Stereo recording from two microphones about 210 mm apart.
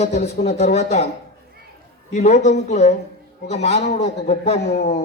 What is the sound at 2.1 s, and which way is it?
A man's voice, 35° left (ahead or behind).